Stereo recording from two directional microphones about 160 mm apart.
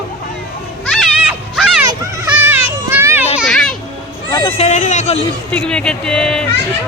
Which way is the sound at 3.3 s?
Centre (ahead or behind).